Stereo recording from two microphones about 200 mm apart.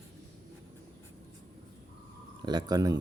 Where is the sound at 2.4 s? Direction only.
20° right (ahead or behind).